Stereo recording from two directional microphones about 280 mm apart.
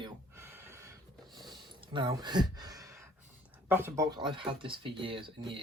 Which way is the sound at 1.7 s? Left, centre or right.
Centre.